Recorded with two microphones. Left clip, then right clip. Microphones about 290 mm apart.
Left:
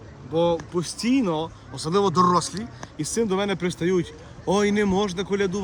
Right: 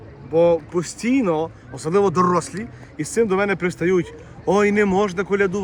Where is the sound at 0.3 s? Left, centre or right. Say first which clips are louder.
Right 6 dB; centre.